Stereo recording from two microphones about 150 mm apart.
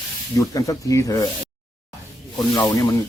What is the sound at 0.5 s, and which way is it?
Speech, 20° left (ahead or behind).